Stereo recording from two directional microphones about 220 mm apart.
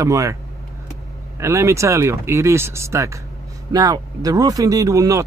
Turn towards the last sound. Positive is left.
turn(degrees=-15)  # may be behind; listen again after turning